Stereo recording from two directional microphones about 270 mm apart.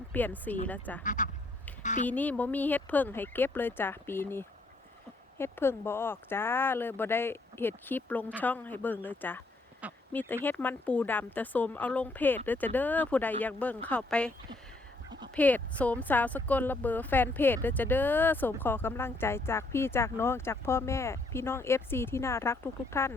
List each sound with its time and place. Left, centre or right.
0.1 s speech: centre
1.0 s duck: left
1.8 s a woman's voice: left
2.0 s speech: centre
15.4 s speech: centre